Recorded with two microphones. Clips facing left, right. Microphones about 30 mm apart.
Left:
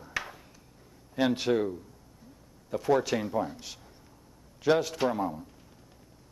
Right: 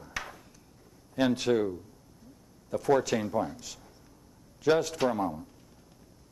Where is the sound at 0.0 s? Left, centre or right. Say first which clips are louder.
Left 3 dB; centre.